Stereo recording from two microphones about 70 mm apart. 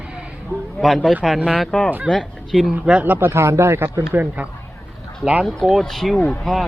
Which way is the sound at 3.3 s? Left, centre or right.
Right.